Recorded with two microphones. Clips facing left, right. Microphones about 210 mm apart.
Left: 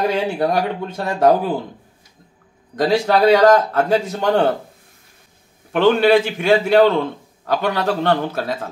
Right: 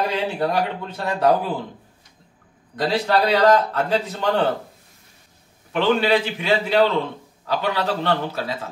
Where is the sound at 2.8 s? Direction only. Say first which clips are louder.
Left 4 dB; 45° left (ahead or behind).